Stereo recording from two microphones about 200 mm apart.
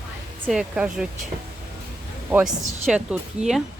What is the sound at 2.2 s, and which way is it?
A woman's voice, 10° right (ahead or behind).